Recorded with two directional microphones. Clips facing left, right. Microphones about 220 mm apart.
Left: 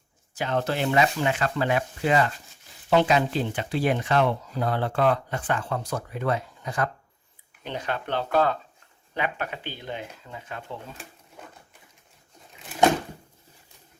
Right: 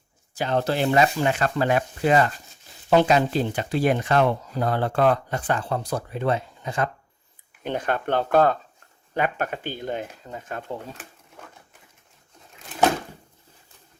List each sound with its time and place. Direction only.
0.3 s speech: 35° right (ahead or behind)
7.6 s speech: 50° right (ahead or behind)
12.5 s a sound: centre (ahead or behind)